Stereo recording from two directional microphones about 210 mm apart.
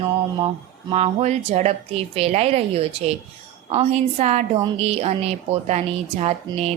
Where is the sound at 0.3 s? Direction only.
25° right (ahead or behind).